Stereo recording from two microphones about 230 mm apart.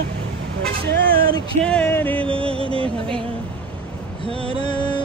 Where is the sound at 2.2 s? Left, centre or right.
Right.